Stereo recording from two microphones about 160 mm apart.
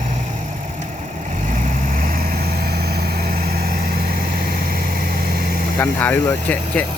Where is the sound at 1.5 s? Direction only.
60° right (ahead or behind).